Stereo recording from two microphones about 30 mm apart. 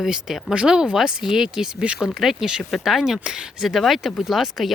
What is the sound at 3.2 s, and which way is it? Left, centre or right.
Speech, right.